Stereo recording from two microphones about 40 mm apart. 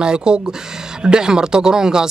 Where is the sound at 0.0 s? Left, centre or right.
Right.